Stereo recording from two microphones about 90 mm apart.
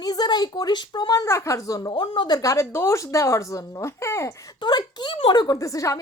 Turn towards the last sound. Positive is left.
turn(degrees=35)  # may be behind; listen again after turning